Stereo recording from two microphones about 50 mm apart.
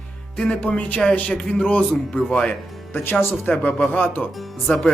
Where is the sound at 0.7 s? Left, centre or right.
Left; by 2.5 s centre.